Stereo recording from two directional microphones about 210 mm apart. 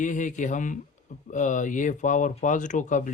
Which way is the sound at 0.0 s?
35° left (ahead or behind).